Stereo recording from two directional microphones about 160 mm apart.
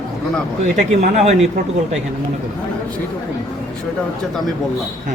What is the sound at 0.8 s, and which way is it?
Speech, 45° right (ahead or behind).